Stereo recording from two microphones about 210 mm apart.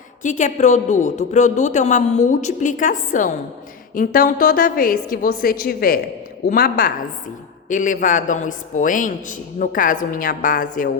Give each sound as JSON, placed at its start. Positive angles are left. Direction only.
{"t": 0.2, "sound": "a woman's voice", "side_deg": 35}